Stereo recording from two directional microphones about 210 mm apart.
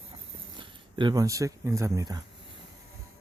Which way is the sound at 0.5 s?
20° right (ahead or behind).